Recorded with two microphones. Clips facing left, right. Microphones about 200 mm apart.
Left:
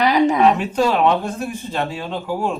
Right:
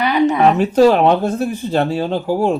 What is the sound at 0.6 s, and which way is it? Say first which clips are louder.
Speech: right 6 dB; 40° right (ahead or behind).